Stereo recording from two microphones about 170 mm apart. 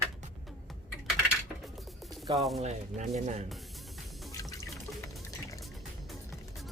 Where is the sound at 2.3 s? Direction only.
Centre (ahead or behind).